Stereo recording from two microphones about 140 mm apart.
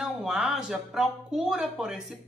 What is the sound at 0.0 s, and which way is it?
A woman's voice, 5° right (ahead or behind).